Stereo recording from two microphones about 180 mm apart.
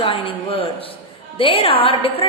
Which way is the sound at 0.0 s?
30° left (ahead or behind).